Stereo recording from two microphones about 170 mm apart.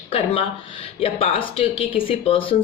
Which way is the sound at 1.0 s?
35° left (ahead or behind).